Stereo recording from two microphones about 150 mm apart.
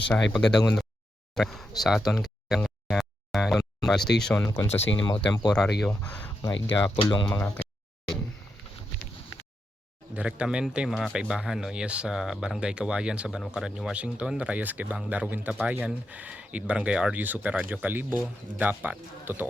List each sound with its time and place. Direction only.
0.1 s speech: 5° left (ahead or behind)
2.9 s a sound: centre (ahead or behind)
4.4 s speech: 15° left (ahead or behind)
4.8 s speech: 30° left (ahead or behind)
5.8 s speech: 10° left (ahead or behind)
6.5 s speech: 30° left (ahead or behind)
10.2 s speech: 5° right (ahead or behind)